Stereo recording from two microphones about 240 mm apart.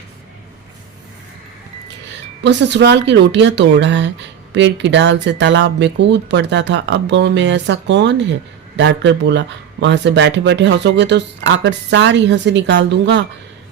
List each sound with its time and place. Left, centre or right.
2.4 s speech: right